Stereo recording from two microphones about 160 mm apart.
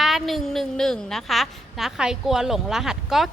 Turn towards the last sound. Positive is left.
turn(degrees=0)  # may be behind; listen again after turning